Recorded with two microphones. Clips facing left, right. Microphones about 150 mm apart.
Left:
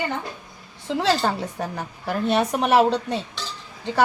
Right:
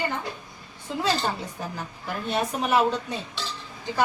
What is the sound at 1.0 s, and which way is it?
A woman's voice, 65° left (ahead or behind).